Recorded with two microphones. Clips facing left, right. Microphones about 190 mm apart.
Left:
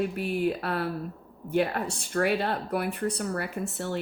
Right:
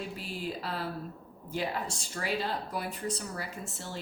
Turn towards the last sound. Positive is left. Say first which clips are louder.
# left 9 dB
turn(degrees=60)  # may be behind; listen again after turning